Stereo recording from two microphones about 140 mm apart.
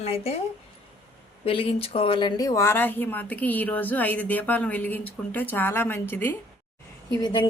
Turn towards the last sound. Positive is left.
turn(degrees=35)  # may be behind; listen again after turning